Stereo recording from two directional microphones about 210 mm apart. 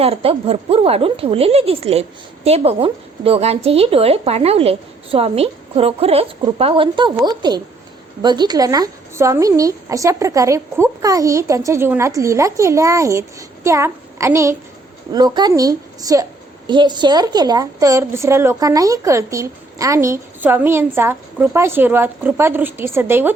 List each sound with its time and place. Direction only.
0.0 s a woman's voice: 30° right (ahead or behind); by 23.3 s 10° right (ahead or behind)